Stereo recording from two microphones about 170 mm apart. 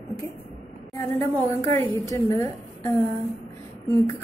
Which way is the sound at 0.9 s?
15° left (ahead or behind).